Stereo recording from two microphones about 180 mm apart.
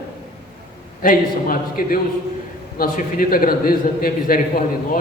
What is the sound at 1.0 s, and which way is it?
A man's voice, 50° left (ahead or behind).